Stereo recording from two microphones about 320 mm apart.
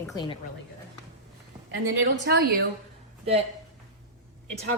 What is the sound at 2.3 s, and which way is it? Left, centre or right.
Speech, right.